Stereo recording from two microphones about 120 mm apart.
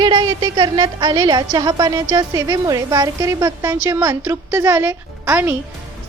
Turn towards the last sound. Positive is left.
turn(degrees=-15)  # may be behind; listen again after turning